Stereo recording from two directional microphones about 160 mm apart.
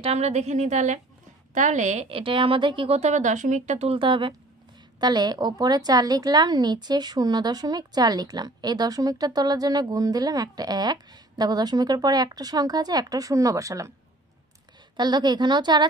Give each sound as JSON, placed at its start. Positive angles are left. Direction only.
{"t": 0.0, "sound": "a woman's voice", "side_deg": -40}
{"t": 15.0, "sound": "a woman's voice", "side_deg": -25}